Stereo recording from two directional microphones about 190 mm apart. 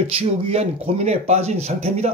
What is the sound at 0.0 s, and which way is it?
Speech, 30° right (ahead or behind).